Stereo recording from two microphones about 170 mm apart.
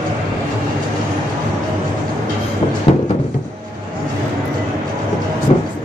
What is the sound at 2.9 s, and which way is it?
Music, 35° left (ahead or behind).